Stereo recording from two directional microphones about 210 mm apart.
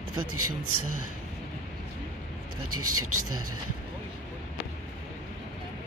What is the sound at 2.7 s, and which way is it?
Speech, 90° right.